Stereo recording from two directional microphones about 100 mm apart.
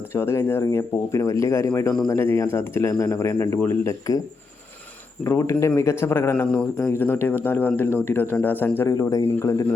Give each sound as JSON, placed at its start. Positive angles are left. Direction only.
{"t": 0.1, "sound": "speech", "side_deg": 25}
{"t": 5.2, "sound": "speech", "side_deg": 30}
{"t": 6.7, "sound": "speech", "side_deg": 35}
{"t": 7.0, "sound": "speech", "side_deg": 20}
{"t": 8.9, "sound": "speech", "side_deg": 35}